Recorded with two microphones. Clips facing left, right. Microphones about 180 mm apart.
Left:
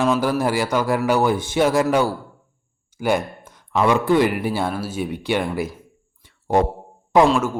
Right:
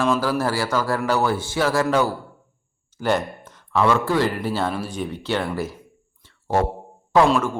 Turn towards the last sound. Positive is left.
turn(degrees=5)  # may be behind; listen again after turning